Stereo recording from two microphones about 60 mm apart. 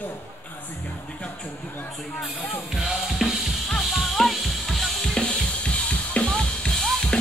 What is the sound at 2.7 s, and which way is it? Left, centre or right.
Music, centre.